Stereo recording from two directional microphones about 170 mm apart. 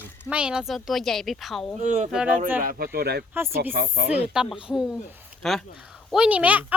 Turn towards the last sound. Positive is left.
turn(degrees=-10)  # may be behind; listen again after turning